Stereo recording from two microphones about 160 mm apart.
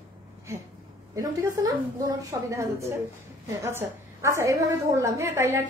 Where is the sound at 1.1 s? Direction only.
20° right (ahead or behind).